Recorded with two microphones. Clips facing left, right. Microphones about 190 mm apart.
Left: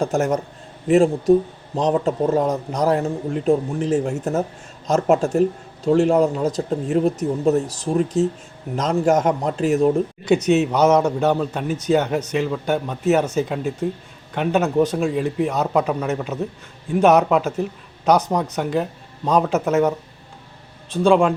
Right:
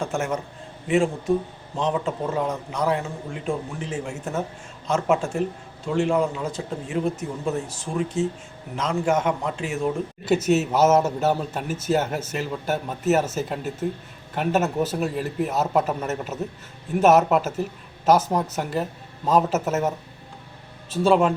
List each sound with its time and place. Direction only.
0.0 s speech: 40° left (ahead or behind)
10.2 s speech: 5° right (ahead or behind)
20.9 s speech: 5° right (ahead or behind)